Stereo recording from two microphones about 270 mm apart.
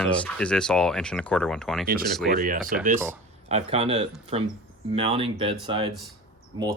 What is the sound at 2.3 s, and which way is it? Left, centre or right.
Speech, right.